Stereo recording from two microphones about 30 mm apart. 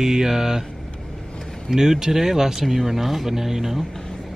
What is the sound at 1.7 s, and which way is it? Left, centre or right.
Speech, centre.